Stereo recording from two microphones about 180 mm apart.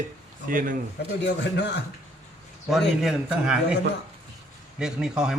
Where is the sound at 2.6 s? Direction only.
Centre (ahead or behind).